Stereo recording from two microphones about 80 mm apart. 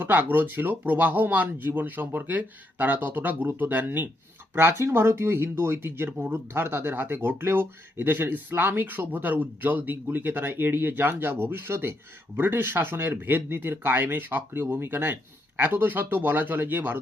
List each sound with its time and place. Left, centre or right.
0.0 s speech: right